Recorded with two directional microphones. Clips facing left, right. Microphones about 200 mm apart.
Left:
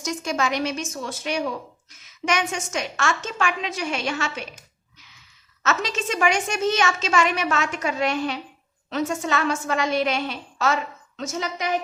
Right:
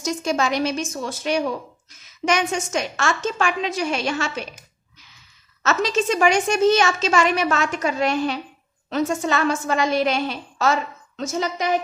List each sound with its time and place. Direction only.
0.0 s a woman's voice: 30° right (ahead or behind)
5.6 s a woman's voice: 35° right (ahead or behind)